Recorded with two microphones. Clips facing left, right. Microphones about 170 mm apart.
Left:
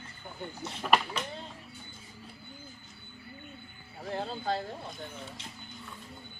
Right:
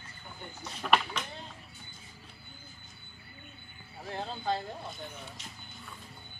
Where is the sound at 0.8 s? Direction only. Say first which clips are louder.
Left 1 dB; 5° left (ahead or behind).